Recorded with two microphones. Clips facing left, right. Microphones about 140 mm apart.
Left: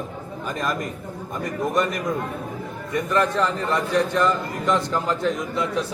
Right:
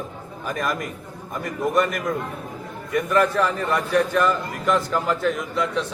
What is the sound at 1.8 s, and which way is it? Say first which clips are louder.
A man's voice: right 2 dB; centre (ahead or behind).